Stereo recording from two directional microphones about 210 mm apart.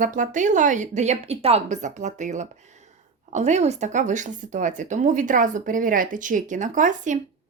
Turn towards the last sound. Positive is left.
turn(degrees=-35)  # may be behind; listen again after turning